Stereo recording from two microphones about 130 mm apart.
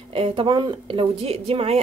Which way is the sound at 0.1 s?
45° right (ahead or behind).